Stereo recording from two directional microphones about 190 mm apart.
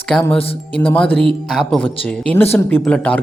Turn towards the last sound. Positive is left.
turn(degrees=5)  # may be behind; listen again after turning